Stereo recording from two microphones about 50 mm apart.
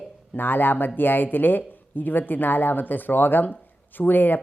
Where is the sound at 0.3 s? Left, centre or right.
Left.